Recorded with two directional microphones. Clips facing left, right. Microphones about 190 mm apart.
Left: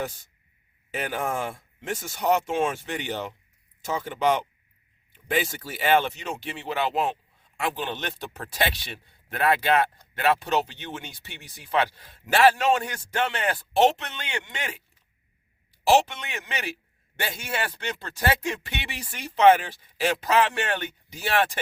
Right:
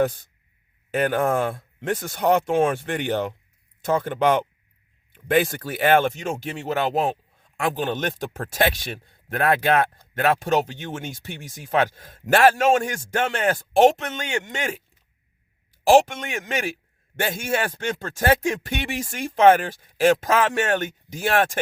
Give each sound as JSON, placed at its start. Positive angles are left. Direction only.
{"t": 0.0, "sound": "speech", "side_deg": -55}
{"t": 15.8, "sound": "speech", "side_deg": -50}